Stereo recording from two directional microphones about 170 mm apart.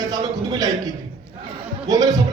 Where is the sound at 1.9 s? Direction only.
20° right (ahead or behind).